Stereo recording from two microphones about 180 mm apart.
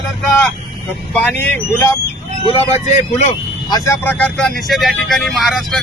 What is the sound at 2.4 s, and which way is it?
Speech, 35° left (ahead or behind).